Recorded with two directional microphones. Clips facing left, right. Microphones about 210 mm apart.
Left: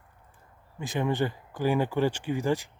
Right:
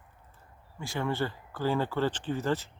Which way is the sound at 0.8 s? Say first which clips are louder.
Left 4 dB; 20° left (ahead or behind).